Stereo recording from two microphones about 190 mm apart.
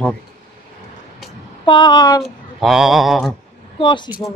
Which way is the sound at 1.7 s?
20° left (ahead or behind).